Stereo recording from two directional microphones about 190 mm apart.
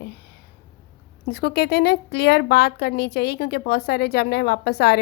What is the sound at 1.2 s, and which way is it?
A woman's voice, 55° left (ahead or behind).